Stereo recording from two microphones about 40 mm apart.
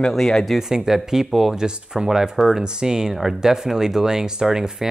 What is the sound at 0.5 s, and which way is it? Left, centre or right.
Speech, centre.